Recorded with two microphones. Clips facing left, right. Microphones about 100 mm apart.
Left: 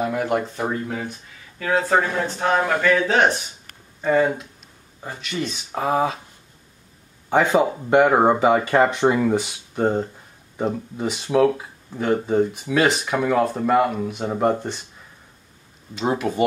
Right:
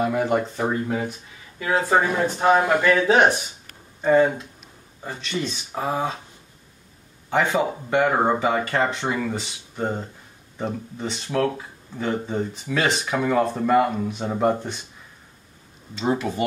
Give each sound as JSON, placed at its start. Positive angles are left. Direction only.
{"t": 0.0, "sound": "speech", "side_deg": 0}
{"t": 5.0, "sound": "speech", "side_deg": 5}
{"t": 7.2, "sound": "speech", "side_deg": 15}
{"t": 15.9, "sound": "speech", "side_deg": 10}